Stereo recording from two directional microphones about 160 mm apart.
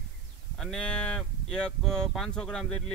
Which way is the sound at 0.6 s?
5° left (ahead or behind).